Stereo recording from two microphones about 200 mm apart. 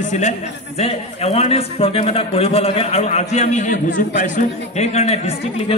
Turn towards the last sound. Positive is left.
turn(degrees=30)  # may be behind; listen again after turning